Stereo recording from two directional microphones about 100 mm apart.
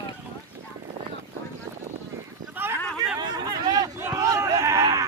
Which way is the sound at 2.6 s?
20° right (ahead or behind).